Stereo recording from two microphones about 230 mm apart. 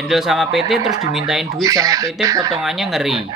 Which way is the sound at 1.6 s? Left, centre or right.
Centre.